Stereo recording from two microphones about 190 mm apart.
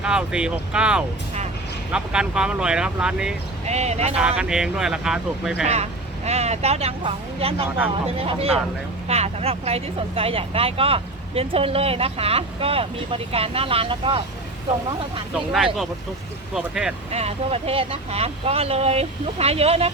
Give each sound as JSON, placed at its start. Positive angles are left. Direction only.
{"t": 0.0, "sound": "speech", "side_deg": -5}
{"t": 3.7, "sound": "speech", "side_deg": -35}
{"t": 4.1, "sound": "speech", "side_deg": -5}
{"t": 5.6, "sound": "speech", "side_deg": -35}
{"t": 15.5, "sound": "speech", "side_deg": 0}
{"t": 17.1, "sound": "speech", "side_deg": -35}